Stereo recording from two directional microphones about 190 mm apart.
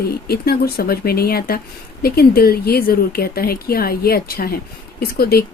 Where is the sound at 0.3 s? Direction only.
55° left (ahead or behind).